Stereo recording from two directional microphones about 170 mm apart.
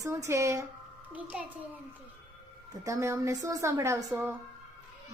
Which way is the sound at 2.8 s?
15° right (ahead or behind).